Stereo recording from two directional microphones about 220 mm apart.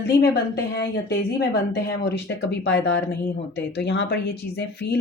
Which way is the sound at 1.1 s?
50° left (ahead or behind).